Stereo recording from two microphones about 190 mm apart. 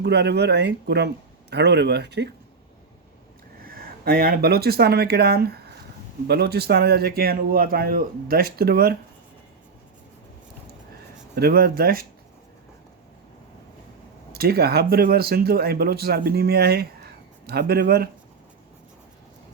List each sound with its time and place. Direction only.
0.0 s speech: 60° right (ahead or behind)
3.6 s a man's voice: 50° right (ahead or behind)
11.3 s a man's voice: 55° right (ahead or behind)
14.3 s speech: 55° right (ahead or behind)